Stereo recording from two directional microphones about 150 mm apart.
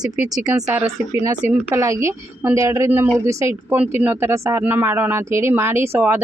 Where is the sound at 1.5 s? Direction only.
15° right (ahead or behind).